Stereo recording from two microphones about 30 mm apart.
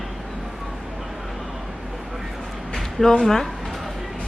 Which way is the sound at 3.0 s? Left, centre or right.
Left.